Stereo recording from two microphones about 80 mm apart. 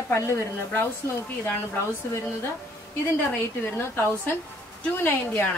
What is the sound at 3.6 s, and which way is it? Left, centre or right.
Speech, left.